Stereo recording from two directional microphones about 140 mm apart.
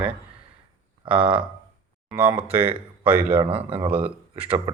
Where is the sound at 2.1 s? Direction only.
10° right (ahead or behind).